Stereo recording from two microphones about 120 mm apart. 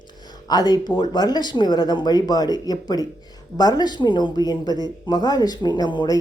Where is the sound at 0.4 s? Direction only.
35° left (ahead or behind).